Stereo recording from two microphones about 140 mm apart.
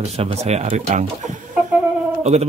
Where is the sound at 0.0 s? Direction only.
50° right (ahead or behind).